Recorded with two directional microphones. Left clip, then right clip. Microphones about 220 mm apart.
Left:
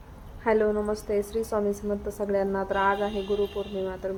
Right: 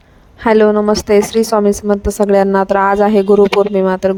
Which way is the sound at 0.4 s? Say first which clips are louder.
Right 14 dB; 45° right (ahead or behind).